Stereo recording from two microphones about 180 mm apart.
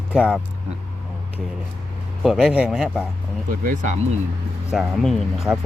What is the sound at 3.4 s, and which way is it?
Speech, 45° right (ahead or behind).